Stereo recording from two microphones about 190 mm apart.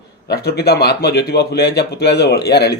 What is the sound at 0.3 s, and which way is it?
A man's voice, 55° left (ahead or behind).